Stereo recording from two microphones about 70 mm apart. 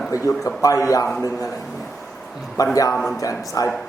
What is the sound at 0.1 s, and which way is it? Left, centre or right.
Speech, left.